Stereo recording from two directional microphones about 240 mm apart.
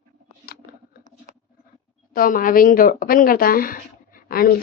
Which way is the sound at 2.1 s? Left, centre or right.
Left.